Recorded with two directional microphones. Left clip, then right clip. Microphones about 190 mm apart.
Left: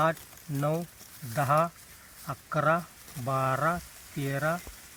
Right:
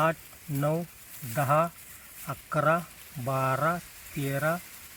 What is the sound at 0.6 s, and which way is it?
Speech, 20° right (ahead or behind).